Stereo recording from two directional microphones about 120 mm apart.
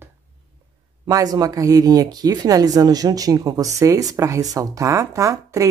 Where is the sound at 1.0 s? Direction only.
30° right (ahead or behind).